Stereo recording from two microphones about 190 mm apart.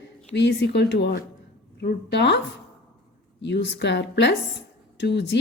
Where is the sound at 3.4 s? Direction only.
65° left (ahead or behind).